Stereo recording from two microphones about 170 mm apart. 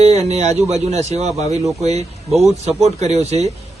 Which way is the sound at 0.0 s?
40° right (ahead or behind).